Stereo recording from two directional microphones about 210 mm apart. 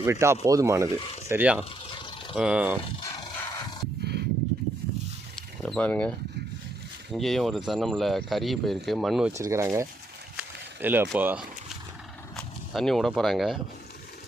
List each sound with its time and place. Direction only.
0.0 s speech: 10° right (ahead or behind)
0.9 s speech: 25° left (ahead or behind)
1.3 s speech: 10° right (ahead or behind)
2.0 s mechanisms: 25° left (ahead or behind)
2.3 s speech: 5° right (ahead or behind)
3.0 s a sound: 20° left (ahead or behind)
5.6 s speech: 5° left (ahead or behind)
9.4 s speech: 15° right (ahead or behind)
10.3 s a sound: 10° right (ahead or behind)
11.1 s speech: 10° right (ahead or behind)
12.4 s speech: centre (ahead or behind)